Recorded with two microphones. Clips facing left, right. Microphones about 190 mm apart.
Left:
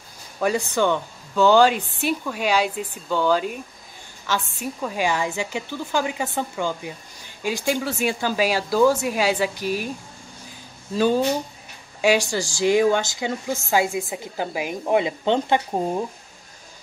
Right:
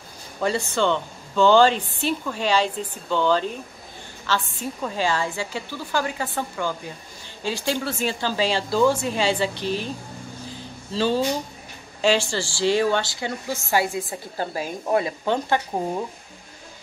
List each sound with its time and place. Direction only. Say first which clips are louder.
0.4 s speech: left 1 dB; 10° left (ahead or behind)
11.0 s speech: left 2 dB; 15° left (ahead or behind)